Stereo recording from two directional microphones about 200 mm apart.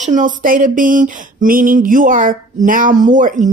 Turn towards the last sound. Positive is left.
turn(degrees=-40)  # may be behind; listen again after turning